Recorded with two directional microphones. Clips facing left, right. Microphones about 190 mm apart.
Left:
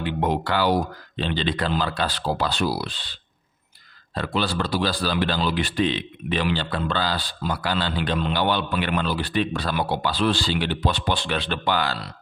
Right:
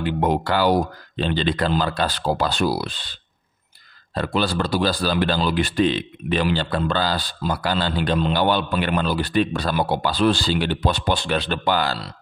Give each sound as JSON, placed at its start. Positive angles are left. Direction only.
{"t": 0.0, "sound": "speech", "side_deg": -45}